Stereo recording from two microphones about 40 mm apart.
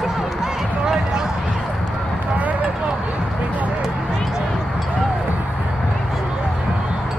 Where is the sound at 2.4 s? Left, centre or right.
Right.